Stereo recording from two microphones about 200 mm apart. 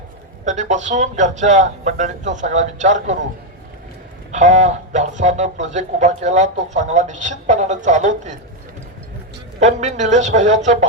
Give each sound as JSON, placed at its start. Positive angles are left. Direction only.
{"t": 0.4, "sound": "speech", "side_deg": -35}
{"t": 4.3, "sound": "speech", "side_deg": -35}
{"t": 9.6, "sound": "speech", "side_deg": -35}